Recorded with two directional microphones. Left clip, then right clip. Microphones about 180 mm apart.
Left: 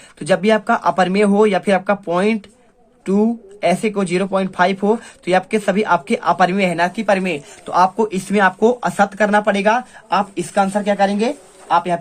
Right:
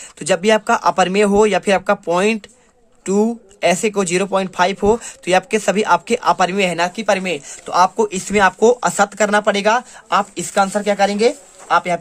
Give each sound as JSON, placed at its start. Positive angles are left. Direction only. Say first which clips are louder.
{"t": 0.2, "sound": "speech", "louder": "even", "side_deg": -30}